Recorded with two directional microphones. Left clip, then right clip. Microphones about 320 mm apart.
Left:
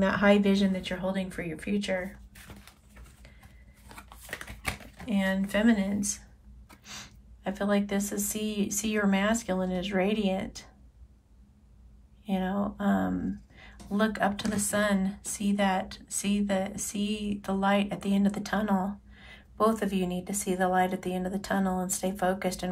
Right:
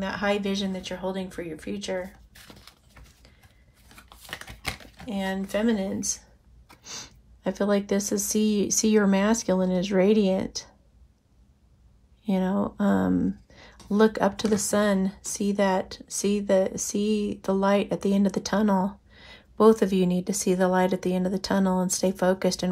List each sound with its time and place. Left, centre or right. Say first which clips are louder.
0.0 s speech: left 3 dB; centre
4.1 s computer keyboard: right 2 dB; centre
6.8 s speech: right 4 dB; centre
12.3 s speech: right 4 dB; centre